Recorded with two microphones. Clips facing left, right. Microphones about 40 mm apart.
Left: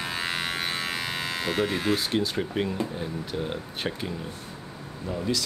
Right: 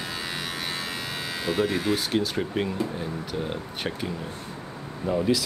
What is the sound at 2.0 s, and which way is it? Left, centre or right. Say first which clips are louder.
Speech: right 1 dB; centre.